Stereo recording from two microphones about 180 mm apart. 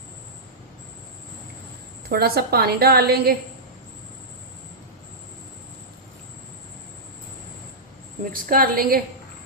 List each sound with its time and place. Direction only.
2.0 s a woman's voice: 60° right (ahead or behind)
8.2 s a woman's voice: 50° right (ahead or behind)